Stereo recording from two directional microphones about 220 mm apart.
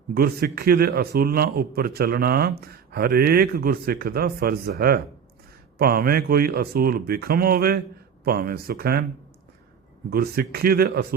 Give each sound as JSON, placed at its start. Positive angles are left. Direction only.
{"t": 0.1, "sound": "a man's voice", "side_deg": -45}
{"t": 10.1, "sound": "a man's voice", "side_deg": -45}